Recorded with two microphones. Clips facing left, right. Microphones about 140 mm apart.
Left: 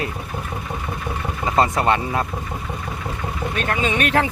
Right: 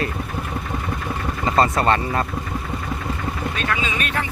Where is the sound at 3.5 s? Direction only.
50° left (ahead or behind); by 4.3 s 80° left.